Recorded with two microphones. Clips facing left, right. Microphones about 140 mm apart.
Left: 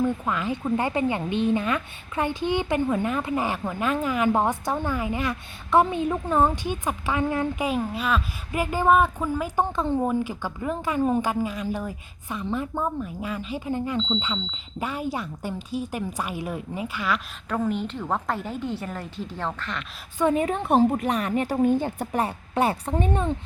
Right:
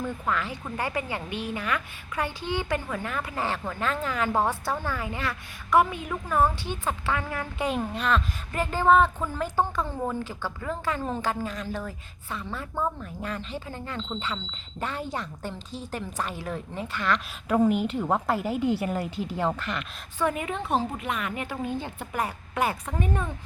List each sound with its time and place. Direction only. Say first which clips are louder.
0.0 s a woman's voice: left 5 dB; 20° left (ahead or behind)
7.6 s a woman's voice: left 2 dB; 5° left (ahead or behind)
17.5 s a woman's voice: right 4 dB; 10° right (ahead or behind)
20.3 s a woman's voice: left 7 dB; 40° left (ahead or behind)